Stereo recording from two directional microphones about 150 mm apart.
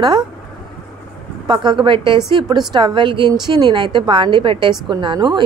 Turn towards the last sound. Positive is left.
turn(degrees=-30)  # may be behind; listen again after turning